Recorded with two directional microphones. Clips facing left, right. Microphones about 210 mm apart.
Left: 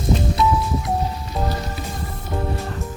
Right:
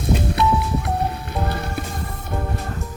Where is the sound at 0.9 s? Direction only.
60° right (ahead or behind).